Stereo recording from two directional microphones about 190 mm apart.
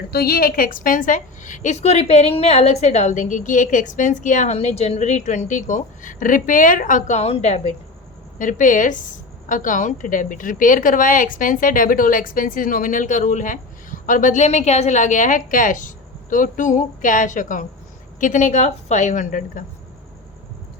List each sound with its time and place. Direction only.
0.1 s a woman's voice: 55° left (ahead or behind)